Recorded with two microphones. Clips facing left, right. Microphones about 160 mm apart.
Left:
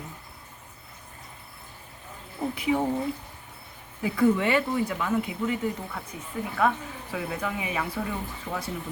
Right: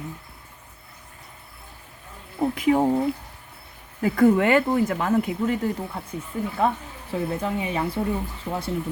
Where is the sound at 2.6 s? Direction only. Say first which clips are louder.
Right 6 dB; 45° right (ahead or behind).